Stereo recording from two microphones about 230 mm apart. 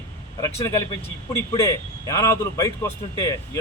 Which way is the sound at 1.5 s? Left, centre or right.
Centre.